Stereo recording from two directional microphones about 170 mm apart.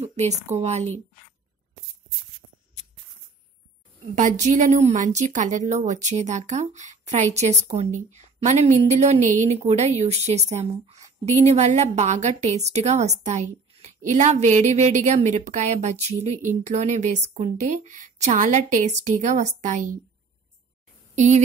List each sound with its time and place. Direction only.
0.0 s speech: 40° right (ahead or behind)
4.1 s a woman's voice: 50° right (ahead or behind)
21.1 s a sound: 45° right (ahead or behind)